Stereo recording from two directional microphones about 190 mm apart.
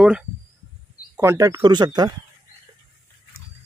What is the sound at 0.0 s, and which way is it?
Speech, 5° right (ahead or behind).